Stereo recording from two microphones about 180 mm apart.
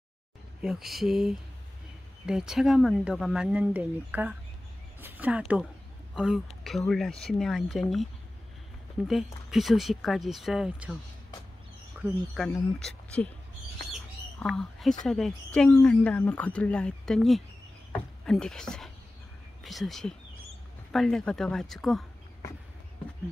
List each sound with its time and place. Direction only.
0.6 s speech: centre (ahead or behind)
12.4 s speech: 5° left (ahead or behind)
14.4 s speech: centre (ahead or behind)